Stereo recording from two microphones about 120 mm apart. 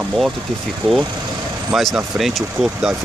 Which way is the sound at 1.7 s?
Centre (ahead or behind).